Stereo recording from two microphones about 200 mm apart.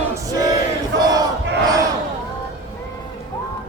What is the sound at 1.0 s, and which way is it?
Crowd, 20° right (ahead or behind).